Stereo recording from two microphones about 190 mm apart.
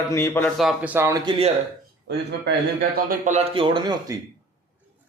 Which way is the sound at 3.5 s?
25° right (ahead or behind).